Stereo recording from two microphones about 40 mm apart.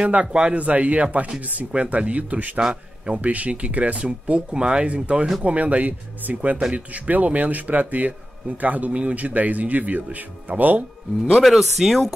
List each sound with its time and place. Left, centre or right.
0.1 s a man's voice: right
11.2 s speech: centre